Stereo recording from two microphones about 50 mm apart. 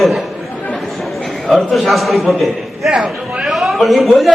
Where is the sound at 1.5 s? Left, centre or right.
Centre.